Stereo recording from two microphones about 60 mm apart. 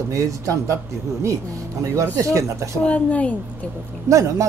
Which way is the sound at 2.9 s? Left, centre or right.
Left.